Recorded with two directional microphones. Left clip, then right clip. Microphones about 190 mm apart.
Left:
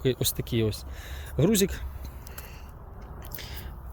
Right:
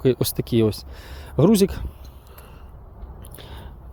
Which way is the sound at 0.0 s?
40° right (ahead or behind).